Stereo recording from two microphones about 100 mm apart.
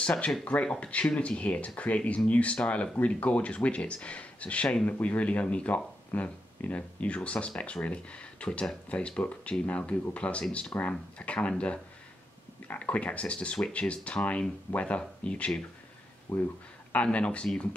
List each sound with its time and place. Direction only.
0.0 s speech: 10° left (ahead or behind)